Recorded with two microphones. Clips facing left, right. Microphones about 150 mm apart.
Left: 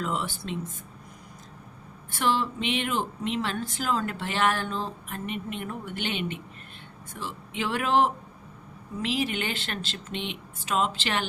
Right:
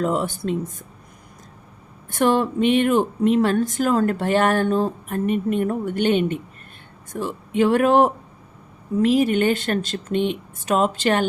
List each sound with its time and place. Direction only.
0.0 s speech: 45° right (ahead or behind)
2.1 s speech: 50° right (ahead or behind)